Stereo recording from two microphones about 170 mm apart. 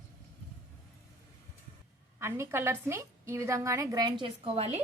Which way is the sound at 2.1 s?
15° right (ahead or behind).